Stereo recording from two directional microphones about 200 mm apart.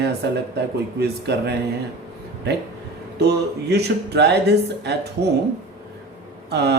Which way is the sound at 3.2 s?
55° right (ahead or behind).